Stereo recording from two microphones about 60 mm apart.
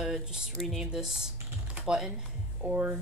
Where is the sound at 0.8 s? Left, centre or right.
Centre.